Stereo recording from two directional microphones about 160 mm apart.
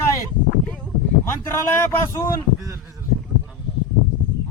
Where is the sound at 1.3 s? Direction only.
15° left (ahead or behind).